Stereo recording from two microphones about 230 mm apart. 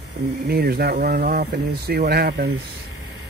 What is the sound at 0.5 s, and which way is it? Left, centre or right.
Speech, right.